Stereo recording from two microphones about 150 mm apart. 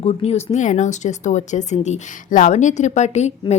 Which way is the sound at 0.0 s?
45° left (ahead or behind).